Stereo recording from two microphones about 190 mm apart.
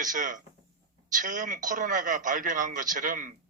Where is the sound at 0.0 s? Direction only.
40° right (ahead or behind).